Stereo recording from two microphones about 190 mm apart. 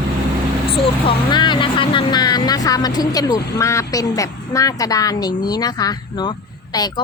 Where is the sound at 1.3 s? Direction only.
25° left (ahead or behind).